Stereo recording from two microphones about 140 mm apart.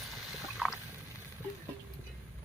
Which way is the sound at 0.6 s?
5° right (ahead or behind).